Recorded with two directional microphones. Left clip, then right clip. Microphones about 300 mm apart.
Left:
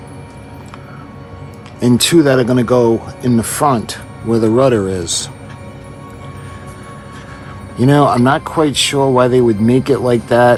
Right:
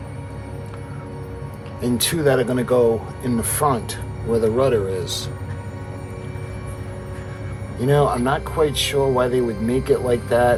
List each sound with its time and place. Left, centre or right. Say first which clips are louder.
1.8 s speech: left 9 dB; left
7.8 s speech: left 7 dB; left